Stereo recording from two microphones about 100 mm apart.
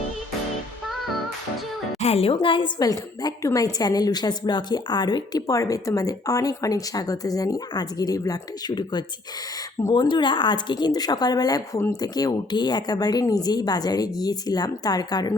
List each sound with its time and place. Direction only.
2.0 s a woman's voice: 80° left; by 15.4 s 40° left (ahead or behind)